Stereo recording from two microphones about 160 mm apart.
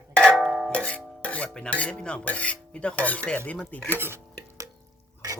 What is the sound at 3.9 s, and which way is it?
Stir, 15° right (ahead or behind).